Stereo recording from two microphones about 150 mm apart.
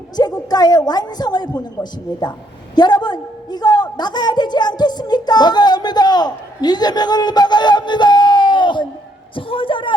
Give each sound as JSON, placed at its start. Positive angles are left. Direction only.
{"t": 0.2, "sound": "a man's voice", "side_deg": 25}